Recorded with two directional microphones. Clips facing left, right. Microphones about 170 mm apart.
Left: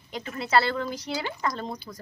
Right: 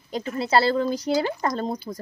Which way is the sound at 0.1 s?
35° right (ahead or behind).